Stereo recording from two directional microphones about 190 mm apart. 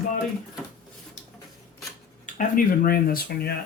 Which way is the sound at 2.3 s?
45° left (ahead or behind).